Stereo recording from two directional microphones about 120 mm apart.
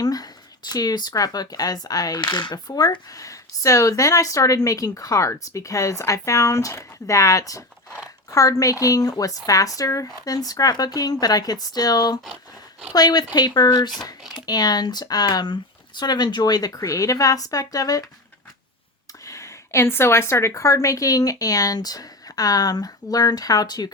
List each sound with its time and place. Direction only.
0.0 s a sound: 30° left (ahead or behind)
0.7 s a woman's voice: 35° left (ahead or behind)
19.2 s a woman's voice: 25° left (ahead or behind)